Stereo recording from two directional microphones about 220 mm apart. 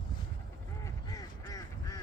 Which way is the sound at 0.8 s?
15° left (ahead or behind).